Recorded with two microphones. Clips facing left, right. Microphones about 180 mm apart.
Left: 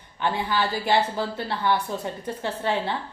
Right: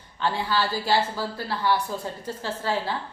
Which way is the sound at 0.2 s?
20° left (ahead or behind).